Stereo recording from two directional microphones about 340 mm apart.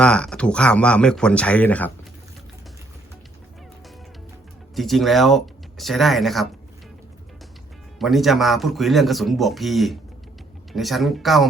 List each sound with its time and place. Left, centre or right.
0.0 s speech: centre
4.7 s speech: centre
7.9 s speech: centre